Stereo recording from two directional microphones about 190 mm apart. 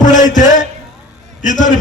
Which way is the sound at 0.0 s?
40° left (ahead or behind).